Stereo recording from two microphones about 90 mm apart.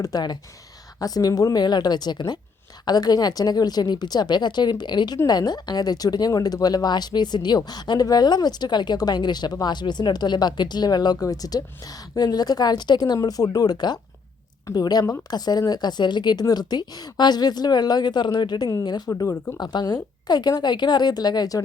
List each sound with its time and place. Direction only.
0.0 s a woman's voice: 50° left (ahead or behind)